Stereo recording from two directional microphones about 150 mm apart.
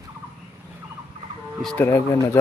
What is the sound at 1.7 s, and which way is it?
Speech, 15° left (ahead or behind).